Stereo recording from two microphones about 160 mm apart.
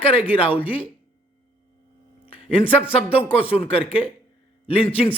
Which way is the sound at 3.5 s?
35° left (ahead or behind).